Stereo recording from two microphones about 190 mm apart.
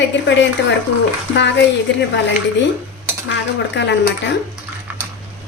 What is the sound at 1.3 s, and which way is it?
Speech, 70° left (ahead or behind).